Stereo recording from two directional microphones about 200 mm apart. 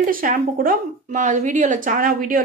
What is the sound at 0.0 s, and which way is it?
Speech, 45° right (ahead or behind).